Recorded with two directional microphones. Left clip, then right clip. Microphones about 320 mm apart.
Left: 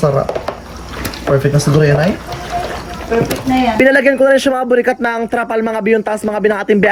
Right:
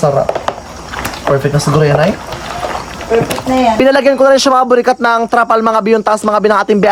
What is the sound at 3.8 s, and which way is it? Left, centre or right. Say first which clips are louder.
Speech: left 1 dB; centre.